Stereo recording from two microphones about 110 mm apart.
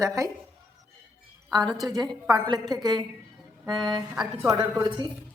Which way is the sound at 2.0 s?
35° right (ahead or behind).